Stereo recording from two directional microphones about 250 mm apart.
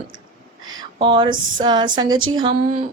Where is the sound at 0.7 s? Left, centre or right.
Centre.